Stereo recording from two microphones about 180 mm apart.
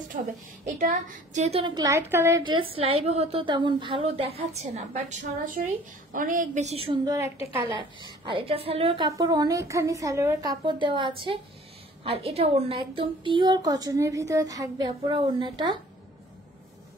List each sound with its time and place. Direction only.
0.3 s a woman's voice: 45° right (ahead or behind); by 1.9 s 30° right (ahead or behind)
1.9 s a woman's voice: 15° right (ahead or behind)
2.4 s a woman's voice: 30° right (ahead or behind)
8.3 s a woman's voice: 30° right (ahead or behind)